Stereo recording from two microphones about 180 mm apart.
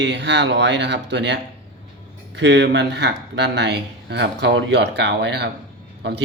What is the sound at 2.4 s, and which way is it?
Speech, 70° right (ahead or behind).